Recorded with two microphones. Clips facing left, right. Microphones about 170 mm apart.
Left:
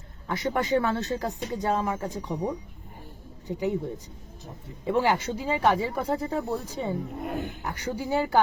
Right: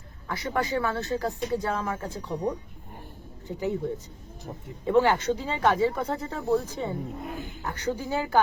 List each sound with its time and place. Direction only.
0.3 s speech: 20° left (ahead or behind)
7.3 s speech: 60° left (ahead or behind)
7.6 s speech: 15° left (ahead or behind)